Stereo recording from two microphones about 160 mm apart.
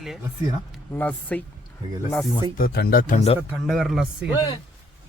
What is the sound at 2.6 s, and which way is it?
Speech, 70° left (ahead or behind).